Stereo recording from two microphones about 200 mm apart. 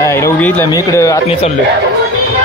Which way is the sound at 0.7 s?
15° left (ahead or behind).